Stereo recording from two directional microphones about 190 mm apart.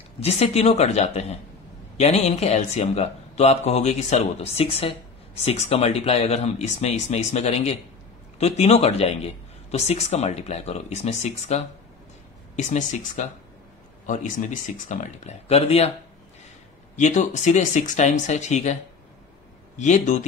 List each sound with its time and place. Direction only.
0.2 s speech: 35° left (ahead or behind)
16.9 s speech: 40° left (ahead or behind)
19.8 s speech: 40° left (ahead or behind)